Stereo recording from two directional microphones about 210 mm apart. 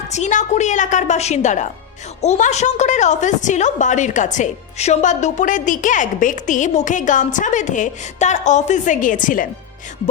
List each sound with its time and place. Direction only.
0.1 s a woman's voice: 35° left (ahead or behind)